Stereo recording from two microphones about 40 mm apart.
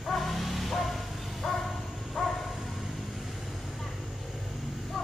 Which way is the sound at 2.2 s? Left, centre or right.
Centre.